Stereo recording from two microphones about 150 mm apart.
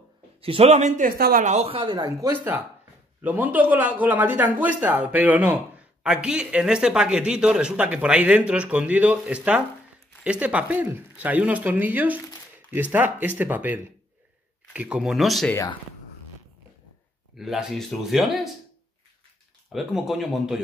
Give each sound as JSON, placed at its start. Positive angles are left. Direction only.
{"t": 0.4, "sound": "speech", "side_deg": -40}
{"t": 1.5, "sound": "a man's voice", "side_deg": -40}
{"t": 17.4, "sound": "speech", "side_deg": 0}
{"t": 19.7, "sound": "speech", "side_deg": 0}